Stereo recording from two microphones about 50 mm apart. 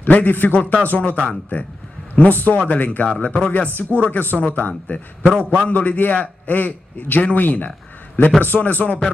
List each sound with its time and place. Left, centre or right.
0.0 s a man's voice: left
3.1 s speech: left
3.5 s a man's voice: left
5.7 s a man's voice: left